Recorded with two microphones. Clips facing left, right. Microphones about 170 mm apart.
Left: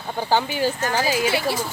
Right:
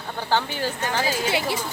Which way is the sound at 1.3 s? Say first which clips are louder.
Left 2 dB; 20° right (ahead or behind).